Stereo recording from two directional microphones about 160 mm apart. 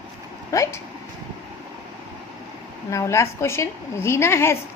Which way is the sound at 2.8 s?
20° left (ahead or behind).